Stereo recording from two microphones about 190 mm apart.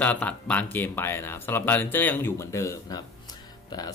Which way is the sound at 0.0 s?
5° left (ahead or behind).